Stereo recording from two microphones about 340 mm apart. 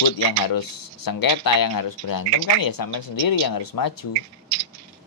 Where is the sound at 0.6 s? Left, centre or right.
Left.